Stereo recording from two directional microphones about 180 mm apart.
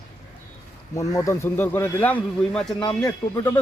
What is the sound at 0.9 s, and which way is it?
A man's voice, 15° left (ahead or behind).